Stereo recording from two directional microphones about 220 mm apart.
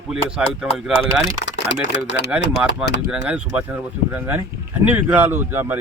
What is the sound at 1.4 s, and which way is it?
Speech, 55° left (ahead or behind).